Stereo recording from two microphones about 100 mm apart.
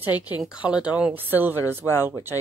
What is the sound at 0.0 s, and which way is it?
Speech, 15° right (ahead or behind).